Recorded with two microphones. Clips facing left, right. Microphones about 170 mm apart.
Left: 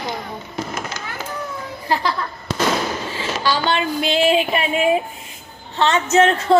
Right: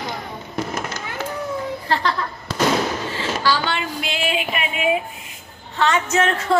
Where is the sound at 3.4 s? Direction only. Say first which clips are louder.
Left 4 dB; 20° left (ahead or behind).